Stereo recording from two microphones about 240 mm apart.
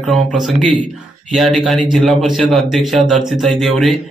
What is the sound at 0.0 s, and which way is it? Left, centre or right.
A man's voice, centre.